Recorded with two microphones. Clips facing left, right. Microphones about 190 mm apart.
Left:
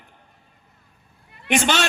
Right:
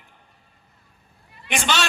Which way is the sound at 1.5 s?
55° left (ahead or behind).